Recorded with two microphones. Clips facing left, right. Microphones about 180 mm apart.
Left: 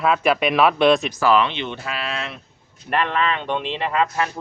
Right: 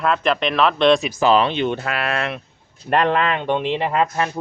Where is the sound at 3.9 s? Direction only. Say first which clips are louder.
Left 2 dB; 25° right (ahead or behind).